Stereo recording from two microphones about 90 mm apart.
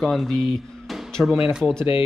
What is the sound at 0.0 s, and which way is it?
Speech, centre (ahead or behind).